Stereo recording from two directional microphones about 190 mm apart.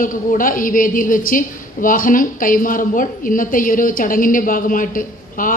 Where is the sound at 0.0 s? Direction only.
45° left (ahead or behind).